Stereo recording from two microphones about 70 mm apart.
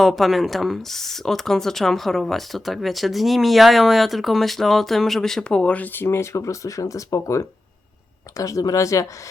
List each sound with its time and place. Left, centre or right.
0.0 s speech: centre; by 9.0 s left